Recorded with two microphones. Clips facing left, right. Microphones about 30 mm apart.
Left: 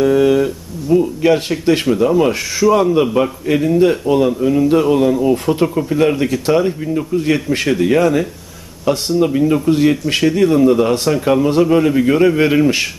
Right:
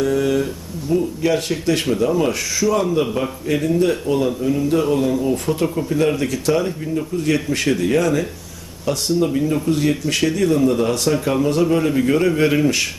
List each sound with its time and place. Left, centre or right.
0.0 s speech: centre
11.1 s speech: centre
11.4 s speech: centre